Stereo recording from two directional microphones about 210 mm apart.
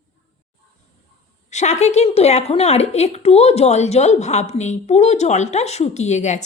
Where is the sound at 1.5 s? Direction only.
35° left (ahead or behind).